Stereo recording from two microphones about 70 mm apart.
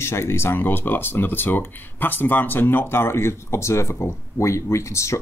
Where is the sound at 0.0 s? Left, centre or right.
Left.